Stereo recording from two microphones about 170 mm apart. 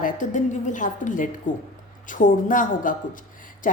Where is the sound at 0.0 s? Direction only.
50° left (ahead or behind).